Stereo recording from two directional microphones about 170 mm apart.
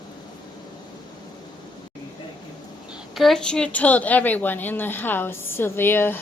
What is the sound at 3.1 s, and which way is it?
A woman's voice, centre (ahead or behind).